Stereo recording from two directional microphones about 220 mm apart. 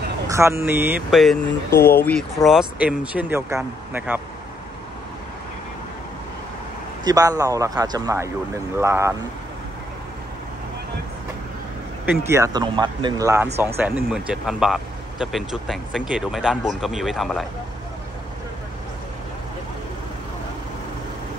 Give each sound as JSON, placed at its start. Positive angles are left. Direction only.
{"t": 0.3, "sound": "speech", "side_deg": -10}
{"t": 1.8, "sound": "speech", "side_deg": 10}
{"t": 7.1, "sound": "speech", "side_deg": -15}
{"t": 12.1, "sound": "speech", "side_deg": -10}
{"t": 14.1, "sound": "speech", "side_deg": -5}